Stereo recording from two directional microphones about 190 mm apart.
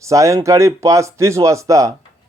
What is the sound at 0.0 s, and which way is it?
Speech, 15° right (ahead or behind).